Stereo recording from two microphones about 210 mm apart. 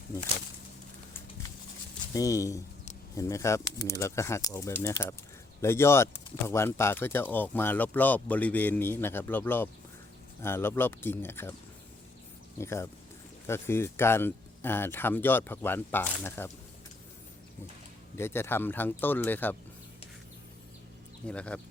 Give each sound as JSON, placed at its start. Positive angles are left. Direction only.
{"t": 2.1, "sound": "speech", "side_deg": 15}
{"t": 12.5, "sound": "speech", "side_deg": 10}
{"t": 18.2, "sound": "speech", "side_deg": 10}
{"t": 21.2, "sound": "speech", "side_deg": 5}